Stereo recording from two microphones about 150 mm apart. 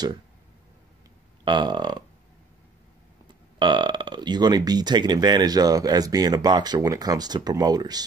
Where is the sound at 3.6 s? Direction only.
30° right (ahead or behind).